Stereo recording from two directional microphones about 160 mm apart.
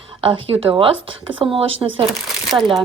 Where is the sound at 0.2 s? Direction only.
35° right (ahead or behind).